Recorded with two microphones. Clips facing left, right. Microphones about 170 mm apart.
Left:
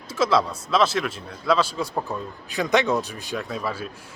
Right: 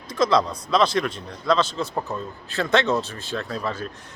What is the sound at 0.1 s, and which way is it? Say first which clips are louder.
A man's voice: right 1 dB; 5° left (ahead or behind).